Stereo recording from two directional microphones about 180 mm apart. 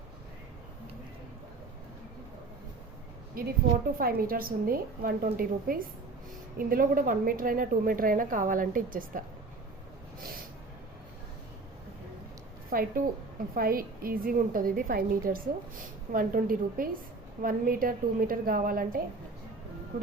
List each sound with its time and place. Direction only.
3.4 s a woman's voice: 55° right (ahead or behind)
12.7 s a woman's voice: 50° right (ahead or behind)